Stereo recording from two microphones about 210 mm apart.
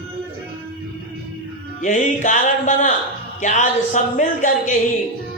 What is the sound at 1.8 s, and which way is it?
Speech, 35° left (ahead or behind).